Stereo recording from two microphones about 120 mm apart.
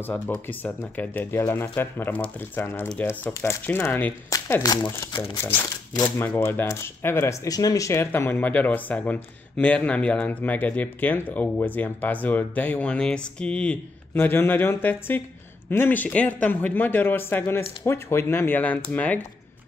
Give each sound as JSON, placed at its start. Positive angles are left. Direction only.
{"t": 0.0, "sound": "speech", "side_deg": 15}
{"t": 14.1, "sound": "speech", "side_deg": 20}